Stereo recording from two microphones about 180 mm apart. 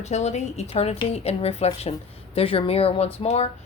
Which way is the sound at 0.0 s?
35° left (ahead or behind).